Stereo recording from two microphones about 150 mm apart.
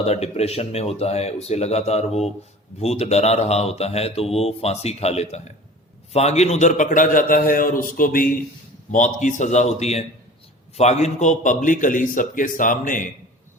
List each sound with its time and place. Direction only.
0.0 s a man's voice: 45° left (ahead or behind); by 8.3 s 70° left (ahead or behind)
8.9 s a man's voice: 55° left (ahead or behind)